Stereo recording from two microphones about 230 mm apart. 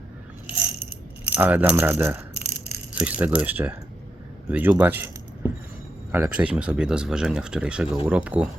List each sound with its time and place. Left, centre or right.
1.2 s speech: centre